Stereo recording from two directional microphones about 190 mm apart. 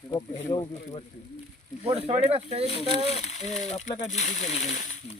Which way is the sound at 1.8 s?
30° right (ahead or behind).